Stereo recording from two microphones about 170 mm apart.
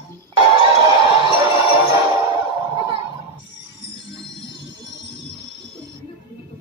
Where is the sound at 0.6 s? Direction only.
25° right (ahead or behind).